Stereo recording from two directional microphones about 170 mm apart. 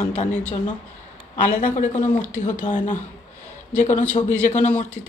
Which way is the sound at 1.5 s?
50° left (ahead or behind).